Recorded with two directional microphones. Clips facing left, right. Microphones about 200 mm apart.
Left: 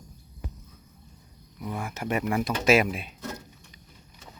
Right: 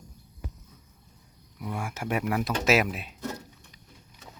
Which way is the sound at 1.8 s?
10° right (ahead or behind).